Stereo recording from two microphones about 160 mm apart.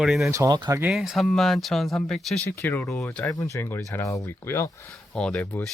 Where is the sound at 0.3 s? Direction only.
20° right (ahead or behind).